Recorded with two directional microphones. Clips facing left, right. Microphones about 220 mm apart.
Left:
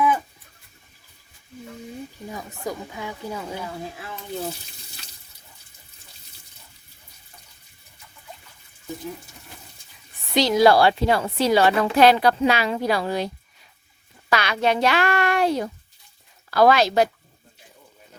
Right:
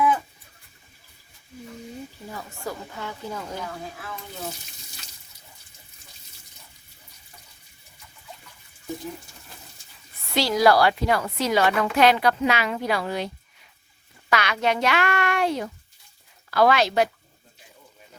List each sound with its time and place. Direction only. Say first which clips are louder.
2.3 s speech: left 3 dB; 15° left (ahead or behind)
10.2 s a woman's voice: left 3 dB; 20° left (ahead or behind); by 17.1 s 40° left (ahead or behind)